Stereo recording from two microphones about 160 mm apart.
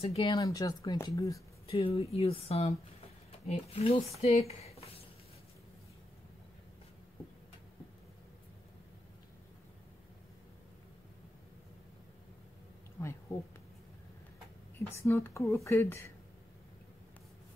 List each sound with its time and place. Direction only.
0.0 s speech: 40° left (ahead or behind)
0.3 s speech: 20° left (ahead or behind)
1.7 s speech: 35° left (ahead or behind)
4.2 s a sound: 40° left (ahead or behind)
13.3 s speech: 20° left (ahead or behind)
15.0 s speech: 15° left (ahead or behind)